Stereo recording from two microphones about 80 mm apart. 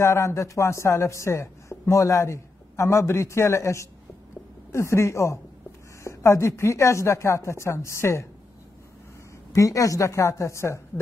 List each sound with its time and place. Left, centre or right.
0.0 s speech: left
9.5 s speech: left